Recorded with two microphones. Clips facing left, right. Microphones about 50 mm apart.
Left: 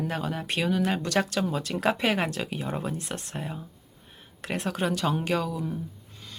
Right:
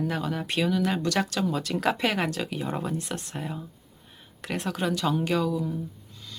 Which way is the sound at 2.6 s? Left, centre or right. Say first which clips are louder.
Right 1 dB; centre.